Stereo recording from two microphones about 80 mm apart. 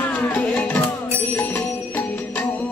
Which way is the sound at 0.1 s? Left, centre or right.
Centre.